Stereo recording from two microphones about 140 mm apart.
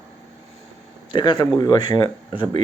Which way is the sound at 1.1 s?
35° left (ahead or behind).